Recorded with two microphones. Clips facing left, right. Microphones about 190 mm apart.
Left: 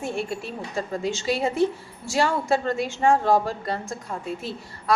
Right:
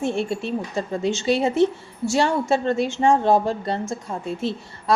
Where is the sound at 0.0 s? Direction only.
25° right (ahead or behind).